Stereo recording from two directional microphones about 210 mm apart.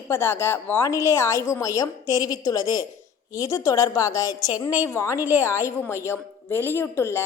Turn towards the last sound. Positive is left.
turn(degrees=10)  # may be behind; listen again after turning